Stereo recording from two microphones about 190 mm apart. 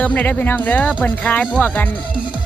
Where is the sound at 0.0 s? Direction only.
10° left (ahead or behind).